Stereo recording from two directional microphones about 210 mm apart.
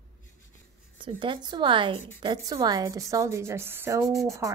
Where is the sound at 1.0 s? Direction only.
25° right (ahead or behind).